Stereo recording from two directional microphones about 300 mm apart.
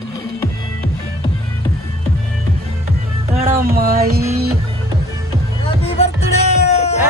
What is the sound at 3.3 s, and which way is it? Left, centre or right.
Music, right.